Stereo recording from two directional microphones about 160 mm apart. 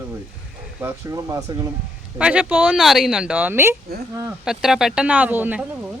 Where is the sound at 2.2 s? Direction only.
5° right (ahead or behind).